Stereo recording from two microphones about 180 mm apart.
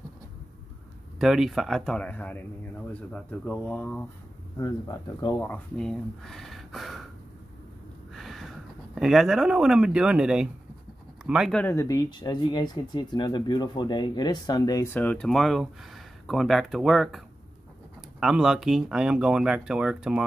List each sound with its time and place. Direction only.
1.2 s speech: centre (ahead or behind)
4.6 s speech: 20° left (ahead or behind)
5.4 s speech: 5° left (ahead or behind)
8.1 s speech: centre (ahead or behind)
11.5 s speech: 15° left (ahead or behind)
18.2 s speech: 5° right (ahead or behind)